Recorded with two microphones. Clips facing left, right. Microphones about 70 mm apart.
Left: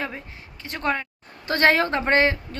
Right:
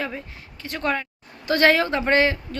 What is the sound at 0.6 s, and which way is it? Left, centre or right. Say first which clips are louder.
A woman's voice: even; left.